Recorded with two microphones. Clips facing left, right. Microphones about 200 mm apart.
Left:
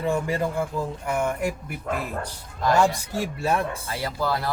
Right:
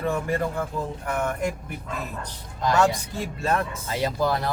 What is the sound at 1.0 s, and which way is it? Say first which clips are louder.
Speech: left 1 dB; 10° left (ahead or behind).